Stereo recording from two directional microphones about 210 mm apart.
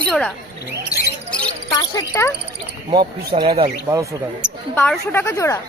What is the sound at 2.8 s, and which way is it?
Speech, 25° right (ahead or behind).